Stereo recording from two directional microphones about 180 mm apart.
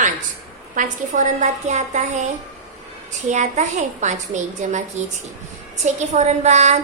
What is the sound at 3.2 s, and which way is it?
A woman's voice, 40° right (ahead or behind).